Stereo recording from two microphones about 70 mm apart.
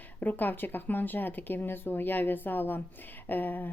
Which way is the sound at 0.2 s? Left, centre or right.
Left.